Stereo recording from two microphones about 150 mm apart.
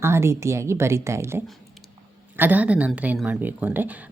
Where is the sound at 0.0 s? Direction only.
15° right (ahead or behind).